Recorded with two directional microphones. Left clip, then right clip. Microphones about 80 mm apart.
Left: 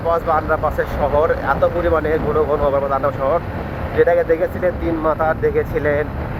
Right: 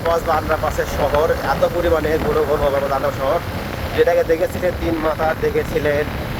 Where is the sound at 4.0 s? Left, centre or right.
Centre.